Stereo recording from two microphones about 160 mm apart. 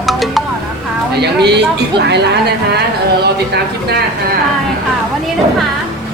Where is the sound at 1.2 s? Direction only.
90° right.